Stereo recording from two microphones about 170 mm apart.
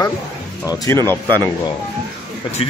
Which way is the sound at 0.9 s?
15° left (ahead or behind).